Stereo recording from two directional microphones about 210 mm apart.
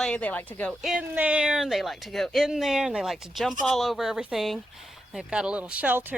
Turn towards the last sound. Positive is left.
turn(degrees=-10)  # may be behind; listen again after turning